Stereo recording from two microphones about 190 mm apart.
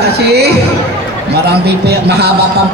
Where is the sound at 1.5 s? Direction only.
60° right (ahead or behind).